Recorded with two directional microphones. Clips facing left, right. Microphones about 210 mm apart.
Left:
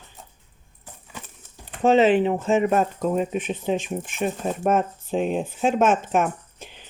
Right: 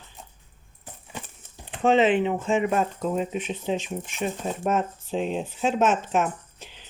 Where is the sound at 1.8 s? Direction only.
40° left (ahead or behind).